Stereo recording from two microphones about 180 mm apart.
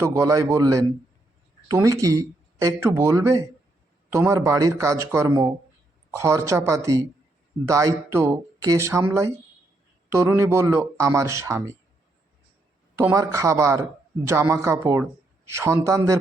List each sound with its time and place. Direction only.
0.0 s speech: 20° right (ahead or behind)
13.0 s speech: 15° right (ahead or behind)